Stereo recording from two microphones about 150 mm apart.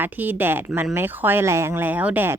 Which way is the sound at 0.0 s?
15° right (ahead or behind).